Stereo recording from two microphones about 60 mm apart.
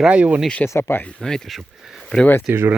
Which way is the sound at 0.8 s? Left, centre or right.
Left.